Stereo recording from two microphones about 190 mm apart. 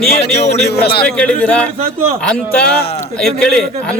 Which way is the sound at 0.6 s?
60° left (ahead or behind).